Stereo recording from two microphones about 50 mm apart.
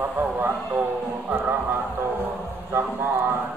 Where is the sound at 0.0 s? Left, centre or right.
Right.